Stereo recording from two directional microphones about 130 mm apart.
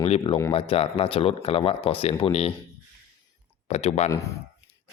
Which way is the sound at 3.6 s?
55° left (ahead or behind).